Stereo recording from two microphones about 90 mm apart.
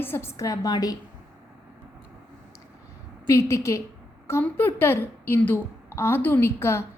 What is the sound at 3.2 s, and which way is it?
A woman's voice, 35° left (ahead or behind).